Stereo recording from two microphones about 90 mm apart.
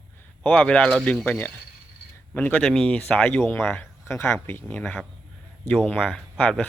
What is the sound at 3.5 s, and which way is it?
Speech, 20° left (ahead or behind).